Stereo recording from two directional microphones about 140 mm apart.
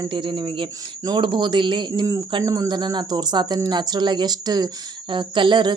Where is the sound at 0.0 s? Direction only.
35° right (ahead or behind).